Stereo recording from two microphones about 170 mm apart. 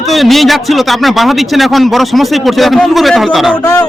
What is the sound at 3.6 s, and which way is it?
Speech, 15° left (ahead or behind).